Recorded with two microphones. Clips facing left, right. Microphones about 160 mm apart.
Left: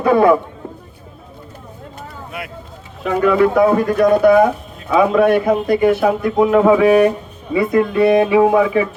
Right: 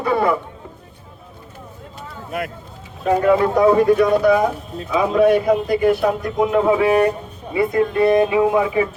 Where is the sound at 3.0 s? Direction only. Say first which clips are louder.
Left 1 dB; 90° left.